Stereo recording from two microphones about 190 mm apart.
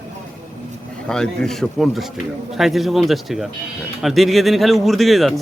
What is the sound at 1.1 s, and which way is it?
Speech, centre (ahead or behind).